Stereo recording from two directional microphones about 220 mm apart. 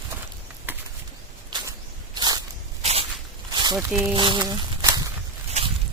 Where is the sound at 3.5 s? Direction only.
20° right (ahead or behind).